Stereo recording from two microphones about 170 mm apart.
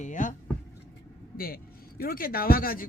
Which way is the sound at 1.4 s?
60° left (ahead or behind).